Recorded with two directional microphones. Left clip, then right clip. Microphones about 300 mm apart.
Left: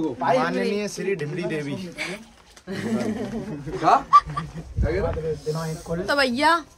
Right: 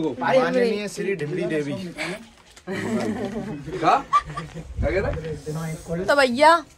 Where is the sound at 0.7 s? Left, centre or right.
Centre.